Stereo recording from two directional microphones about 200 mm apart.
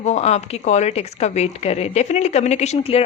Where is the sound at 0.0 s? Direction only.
35° left (ahead or behind).